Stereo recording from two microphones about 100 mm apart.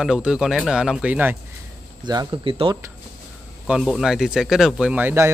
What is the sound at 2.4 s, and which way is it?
Speech, 65° right (ahead or behind).